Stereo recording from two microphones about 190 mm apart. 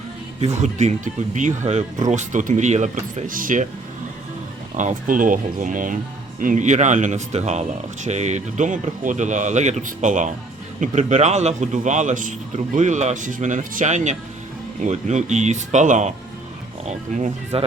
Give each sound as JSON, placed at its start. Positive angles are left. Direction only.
{"t": 0.4, "sound": "a man's voice", "side_deg": -35}
{"t": 4.8, "sound": "a man's voice", "side_deg": -40}